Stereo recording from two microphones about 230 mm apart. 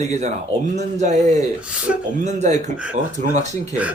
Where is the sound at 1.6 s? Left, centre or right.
Centre.